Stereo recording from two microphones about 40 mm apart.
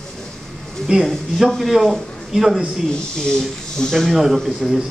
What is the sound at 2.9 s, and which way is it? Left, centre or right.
Speech, centre.